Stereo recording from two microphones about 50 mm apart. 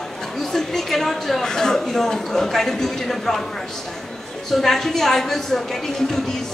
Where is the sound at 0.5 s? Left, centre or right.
Centre.